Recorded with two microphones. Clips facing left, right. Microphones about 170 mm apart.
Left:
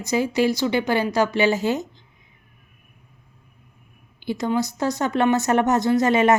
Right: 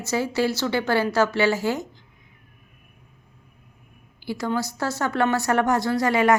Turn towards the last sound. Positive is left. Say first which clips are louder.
# left 3 dB
turn(degrees=20)  # may be behind; listen again after turning